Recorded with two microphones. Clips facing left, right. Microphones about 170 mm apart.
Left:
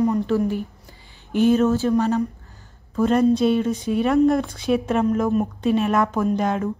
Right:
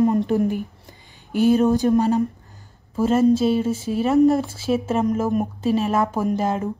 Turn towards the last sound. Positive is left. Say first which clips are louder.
# left 1 dB
turn(degrees=-5)  # may be behind; listen again after turning